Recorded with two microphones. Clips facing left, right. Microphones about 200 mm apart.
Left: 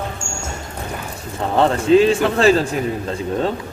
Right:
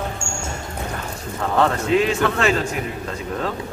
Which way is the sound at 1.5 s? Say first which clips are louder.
Left 5 dB; 30° left (ahead or behind).